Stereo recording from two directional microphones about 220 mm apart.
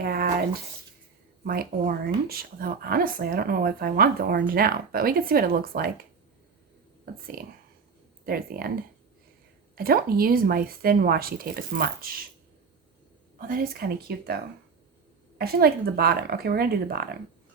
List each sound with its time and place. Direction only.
0.0 s a sound: 45° right (ahead or behind)
1.5 s speech: 40° right (ahead or behind)
7.0 s speech: 40° right (ahead or behind)
9.7 s speech: 40° right (ahead or behind)
13.5 s speech: 40° right (ahead or behind)
15.4 s speech: 45° right (ahead or behind)